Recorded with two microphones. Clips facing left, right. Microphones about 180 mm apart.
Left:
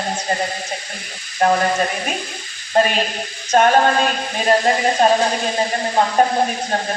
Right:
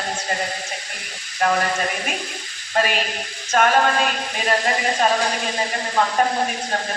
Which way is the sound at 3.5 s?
35° left (ahead or behind).